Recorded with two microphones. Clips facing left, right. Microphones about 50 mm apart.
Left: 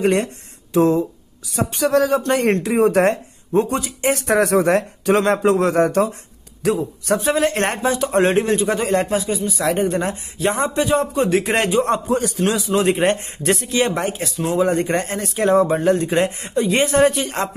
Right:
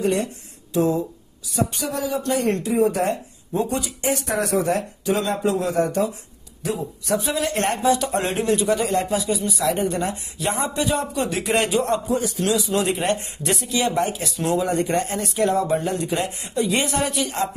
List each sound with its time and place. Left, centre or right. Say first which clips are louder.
0.0 s speech: left 4 dB; left
3.5 s a man's voice: left 5 dB; left